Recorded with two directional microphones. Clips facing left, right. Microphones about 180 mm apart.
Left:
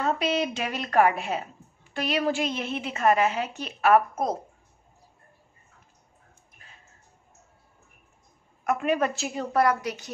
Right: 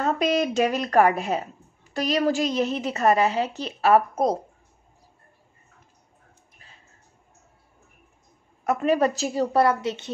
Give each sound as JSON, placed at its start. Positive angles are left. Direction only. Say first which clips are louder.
{"t": 0.0, "sound": "a woman's voice", "louder": "right 3 dB", "side_deg": -45}
{"t": 8.6, "sound": "a woman's voice", "louder": "right 4 dB", "side_deg": -35}